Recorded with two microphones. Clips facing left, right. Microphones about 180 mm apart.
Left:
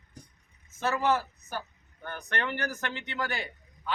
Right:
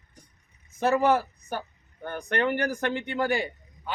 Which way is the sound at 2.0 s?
30° right (ahead or behind).